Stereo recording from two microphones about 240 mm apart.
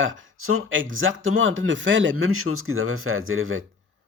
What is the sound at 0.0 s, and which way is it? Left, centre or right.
Speech, right.